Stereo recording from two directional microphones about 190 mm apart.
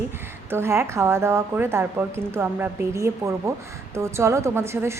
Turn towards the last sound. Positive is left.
turn(degrees=-15)  # may be behind; listen again after turning